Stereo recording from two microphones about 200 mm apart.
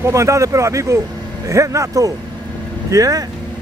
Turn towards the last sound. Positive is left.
turn(degrees=-20)  # may be behind; listen again after turning